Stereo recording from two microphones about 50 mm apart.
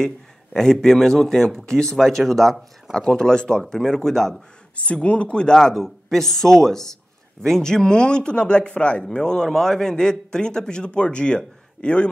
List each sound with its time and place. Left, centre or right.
0.0 s a man's voice: centre
4.7 s a man's voice: left